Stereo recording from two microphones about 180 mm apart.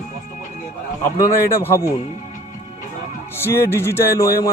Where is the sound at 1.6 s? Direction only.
15° left (ahead or behind).